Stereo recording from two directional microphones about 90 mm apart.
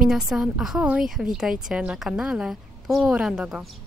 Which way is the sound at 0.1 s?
5° right (ahead or behind).